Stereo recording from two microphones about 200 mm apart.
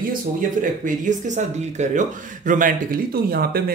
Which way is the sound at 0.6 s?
40° right (ahead or behind).